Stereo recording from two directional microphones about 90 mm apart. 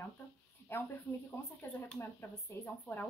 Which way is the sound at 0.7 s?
25° left (ahead or behind).